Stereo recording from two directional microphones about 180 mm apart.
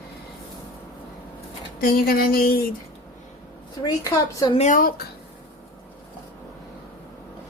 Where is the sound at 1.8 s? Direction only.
55° left (ahead or behind).